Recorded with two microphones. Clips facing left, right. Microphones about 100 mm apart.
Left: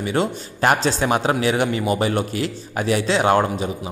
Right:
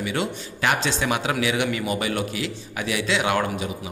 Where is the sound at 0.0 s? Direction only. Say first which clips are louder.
Left 5 dB; 35° left (ahead or behind).